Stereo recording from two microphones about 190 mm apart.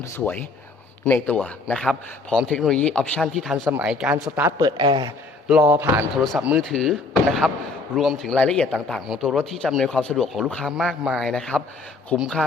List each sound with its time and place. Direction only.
0.0 s speech: 10° left (ahead or behind); by 4.5 s 10° right (ahead or behind)
4.5 s a man's voice: 25° right (ahead or behind)
6.2 s speech: 5° right (ahead or behind)
7.9 s speech: centre (ahead or behind)